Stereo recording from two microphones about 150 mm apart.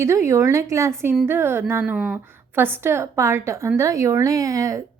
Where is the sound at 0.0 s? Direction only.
15° right (ahead or behind).